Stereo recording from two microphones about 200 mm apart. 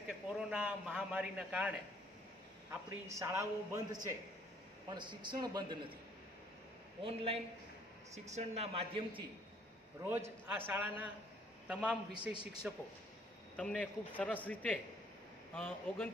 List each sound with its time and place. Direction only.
0.5 s a sound: 5° right (ahead or behind)
2.7 s a man's voice: 10° right (ahead or behind)
7.0 s a man's voice: 30° right (ahead or behind)
10.0 s a man's voice: 10° right (ahead or behind)
13.6 s a man's voice: 5° left (ahead or behind)